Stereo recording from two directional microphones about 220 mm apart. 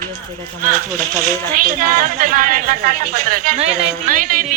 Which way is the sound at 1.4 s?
40° right (ahead or behind).